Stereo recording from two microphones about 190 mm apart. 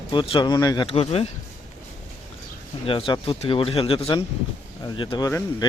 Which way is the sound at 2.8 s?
30° left (ahead or behind).